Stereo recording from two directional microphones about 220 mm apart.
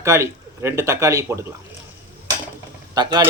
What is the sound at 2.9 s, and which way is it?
Speech, 20° right (ahead or behind).